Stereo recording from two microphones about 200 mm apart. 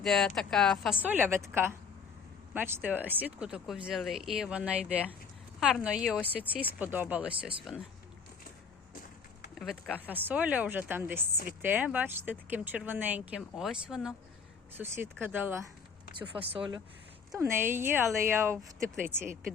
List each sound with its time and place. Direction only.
0.0 s speech: centre (ahead or behind)
6.1 s speech: 10° left (ahead or behind)
6.5 s speech: 10° right (ahead or behind)
9.6 s speech: centre (ahead or behind)
10.1 s speech: 10° right (ahead or behind)
16.5 s speech: 25° right (ahead or behind)
17.3 s speech: 10° right (ahead or behind)